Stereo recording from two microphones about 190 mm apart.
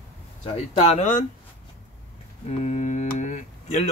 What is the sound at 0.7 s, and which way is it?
Speech, 35° left (ahead or behind).